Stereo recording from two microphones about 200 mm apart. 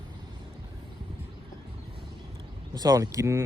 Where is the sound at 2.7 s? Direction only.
20° right (ahead or behind).